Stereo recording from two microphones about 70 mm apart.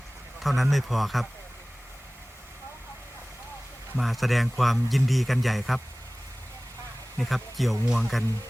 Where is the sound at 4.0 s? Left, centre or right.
Centre.